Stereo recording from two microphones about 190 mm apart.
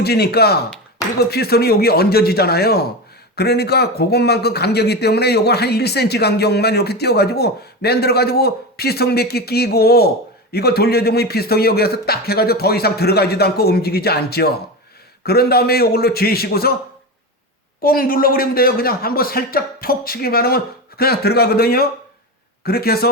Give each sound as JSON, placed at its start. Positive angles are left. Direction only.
{"t": 0.0, "sound": "speech", "side_deg": 55}
{"t": 17.8, "sound": "a man's voice", "side_deg": 50}